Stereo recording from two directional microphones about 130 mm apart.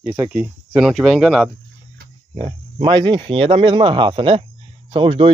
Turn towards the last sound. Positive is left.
turn(degrees=-40)  # may be behind; listen again after turning